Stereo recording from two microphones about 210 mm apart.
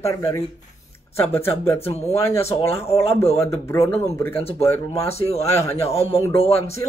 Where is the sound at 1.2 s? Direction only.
10° left (ahead or behind).